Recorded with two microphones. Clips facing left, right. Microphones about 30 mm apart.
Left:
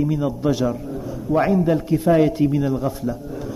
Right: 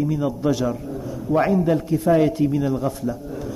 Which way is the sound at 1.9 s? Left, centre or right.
Centre.